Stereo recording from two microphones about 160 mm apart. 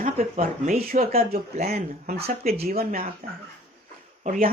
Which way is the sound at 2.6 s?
70° right (ahead or behind).